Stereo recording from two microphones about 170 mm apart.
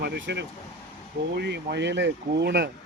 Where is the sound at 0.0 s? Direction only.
80° right.